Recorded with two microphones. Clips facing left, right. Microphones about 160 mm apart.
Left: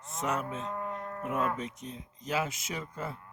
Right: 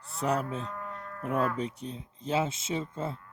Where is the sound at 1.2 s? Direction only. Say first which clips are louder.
Right 3 dB; 35° right (ahead or behind).